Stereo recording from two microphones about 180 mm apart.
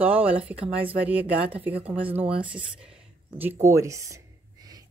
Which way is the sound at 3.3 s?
15° right (ahead or behind).